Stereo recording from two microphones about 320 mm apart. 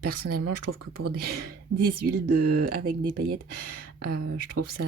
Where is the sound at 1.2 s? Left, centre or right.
Right.